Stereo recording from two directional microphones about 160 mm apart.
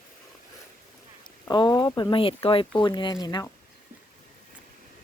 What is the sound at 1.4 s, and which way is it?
Speech, 25° left (ahead or behind).